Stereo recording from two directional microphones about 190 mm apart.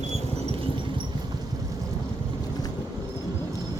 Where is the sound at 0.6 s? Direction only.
25° right (ahead or behind).